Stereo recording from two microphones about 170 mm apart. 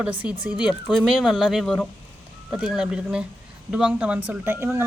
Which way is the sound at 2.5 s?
5° right (ahead or behind).